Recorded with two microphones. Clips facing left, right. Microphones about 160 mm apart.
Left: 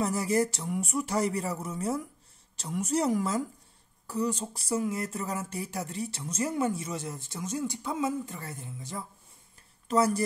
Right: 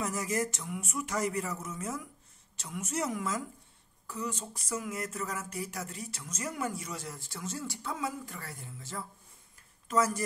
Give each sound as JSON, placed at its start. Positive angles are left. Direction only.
{"t": 0.0, "sound": "speech", "side_deg": 35}
{"t": 9.8, "sound": "speech", "side_deg": 30}